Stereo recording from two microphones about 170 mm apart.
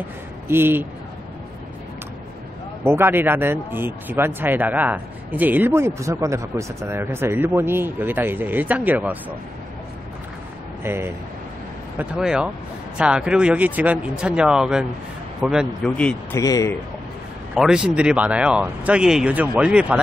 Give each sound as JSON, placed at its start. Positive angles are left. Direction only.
{"t": 0.5, "sound": "speech", "side_deg": -15}
{"t": 2.8, "sound": "speech", "side_deg": -15}
{"t": 10.8, "sound": "speech", "side_deg": -15}
{"t": 16.0, "sound": "speech", "side_deg": 5}
{"t": 16.3, "sound": "speech", "side_deg": 20}
{"t": 17.6, "sound": "speech", "side_deg": -5}